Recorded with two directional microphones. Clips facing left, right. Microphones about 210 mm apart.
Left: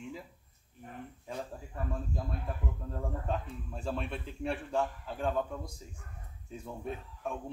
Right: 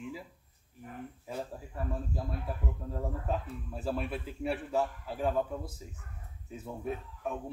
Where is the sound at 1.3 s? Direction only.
5° right (ahead or behind).